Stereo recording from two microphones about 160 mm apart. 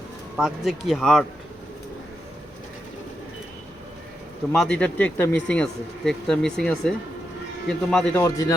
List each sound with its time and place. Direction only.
0.3 s speech: centre (ahead or behind)
4.5 s speech: 5° left (ahead or behind)
8.2 s a man's voice: 20° left (ahead or behind)